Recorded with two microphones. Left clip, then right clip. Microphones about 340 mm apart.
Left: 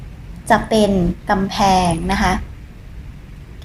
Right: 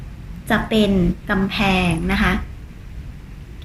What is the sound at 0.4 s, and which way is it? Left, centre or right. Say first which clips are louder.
A woman's voice: left 4 dB; centre.